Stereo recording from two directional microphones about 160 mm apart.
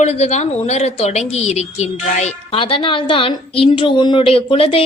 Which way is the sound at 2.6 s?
35° left (ahead or behind).